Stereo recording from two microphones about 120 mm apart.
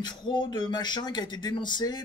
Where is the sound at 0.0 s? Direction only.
40° left (ahead or behind).